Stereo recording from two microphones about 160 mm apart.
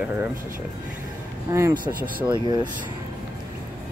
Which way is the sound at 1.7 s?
60° right (ahead or behind).